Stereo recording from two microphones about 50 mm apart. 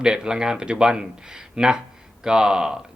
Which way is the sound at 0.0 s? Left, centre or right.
Centre.